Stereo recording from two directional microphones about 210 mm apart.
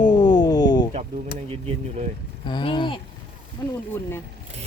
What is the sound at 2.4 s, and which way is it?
Speech, 20° left (ahead or behind).